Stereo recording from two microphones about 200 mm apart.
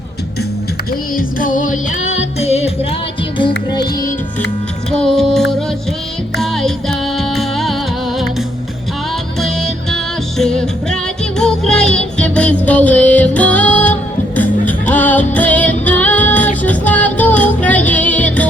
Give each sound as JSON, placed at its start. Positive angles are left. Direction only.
{"t": 1.1, "sound": "music", "side_deg": 40}
{"t": 4.9, "sound": "music", "side_deg": 5}
{"t": 9.4, "sound": "music", "side_deg": 0}
{"t": 15.8, "sound": "female singing", "side_deg": 10}
{"t": 16.6, "sound": "music", "side_deg": 10}